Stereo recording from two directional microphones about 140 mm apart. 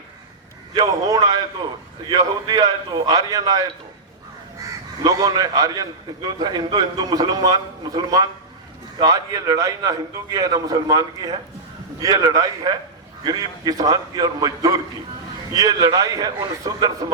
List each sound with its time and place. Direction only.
0.7 s a man's voice: 25° right (ahead or behind)